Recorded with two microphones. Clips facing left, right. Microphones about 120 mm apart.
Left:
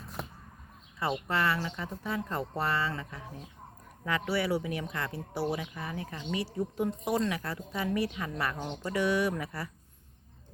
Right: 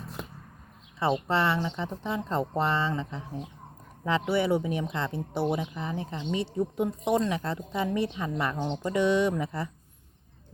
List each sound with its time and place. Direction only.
0.9 s speech: 25° right (ahead or behind)